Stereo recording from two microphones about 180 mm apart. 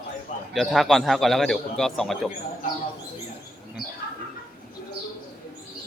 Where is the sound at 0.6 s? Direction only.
Centre (ahead or behind).